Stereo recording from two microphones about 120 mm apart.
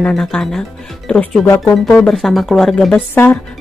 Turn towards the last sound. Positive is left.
turn(degrees=15)  # may be behind; listen again after turning